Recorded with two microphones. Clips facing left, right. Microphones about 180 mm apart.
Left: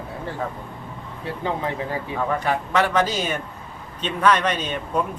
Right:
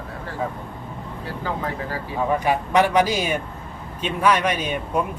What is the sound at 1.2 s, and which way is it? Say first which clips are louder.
Speech: left 2 dB; 25° left (ahead or behind).